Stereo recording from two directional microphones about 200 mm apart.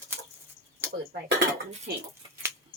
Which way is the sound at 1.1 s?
60° right (ahead or behind).